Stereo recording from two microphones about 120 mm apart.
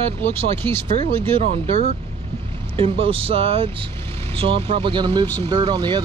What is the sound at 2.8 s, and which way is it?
Speech, 50° right (ahead or behind).